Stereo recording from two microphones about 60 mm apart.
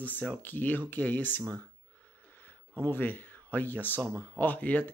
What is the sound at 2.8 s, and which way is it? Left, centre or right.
Speech, left.